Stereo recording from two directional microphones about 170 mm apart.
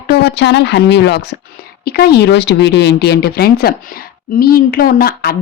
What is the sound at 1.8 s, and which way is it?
A woman's voice, 65° left (ahead or behind).